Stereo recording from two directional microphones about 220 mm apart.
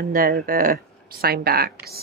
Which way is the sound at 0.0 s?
40° right (ahead or behind).